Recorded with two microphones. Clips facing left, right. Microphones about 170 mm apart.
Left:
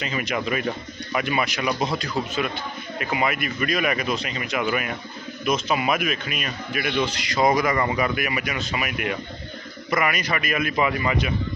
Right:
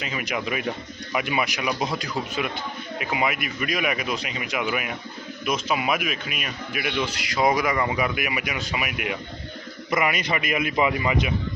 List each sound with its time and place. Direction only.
0.0 s speech: 10° right (ahead or behind)
9.8 s a man's voice: 20° right (ahead or behind)